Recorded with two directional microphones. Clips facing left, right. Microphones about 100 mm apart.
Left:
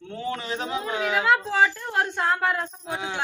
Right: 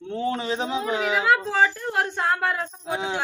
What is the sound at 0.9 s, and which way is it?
Speech, 15° right (ahead or behind).